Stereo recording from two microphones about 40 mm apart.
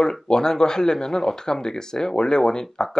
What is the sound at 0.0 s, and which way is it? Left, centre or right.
Speech, centre.